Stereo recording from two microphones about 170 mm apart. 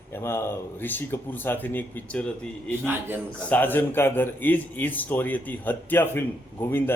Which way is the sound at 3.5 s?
10° left (ahead or behind).